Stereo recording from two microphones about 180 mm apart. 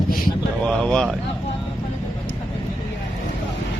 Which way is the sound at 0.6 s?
5° left (ahead or behind).